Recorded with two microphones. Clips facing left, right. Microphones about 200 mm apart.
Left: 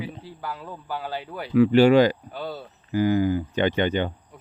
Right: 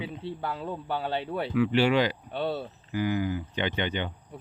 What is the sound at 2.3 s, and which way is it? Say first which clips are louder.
Speech: right 3 dB; 30° right (ahead or behind).